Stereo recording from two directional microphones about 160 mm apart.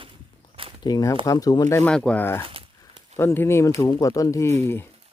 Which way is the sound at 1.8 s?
5° left (ahead or behind).